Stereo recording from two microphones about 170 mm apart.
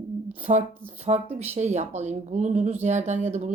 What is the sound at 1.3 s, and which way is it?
Speech, 40° right (ahead or behind).